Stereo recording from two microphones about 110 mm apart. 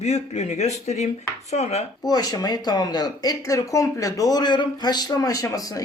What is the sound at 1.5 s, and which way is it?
Speech, 75° left (ahead or behind).